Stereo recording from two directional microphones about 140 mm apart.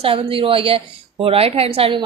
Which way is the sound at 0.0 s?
40° right (ahead or behind).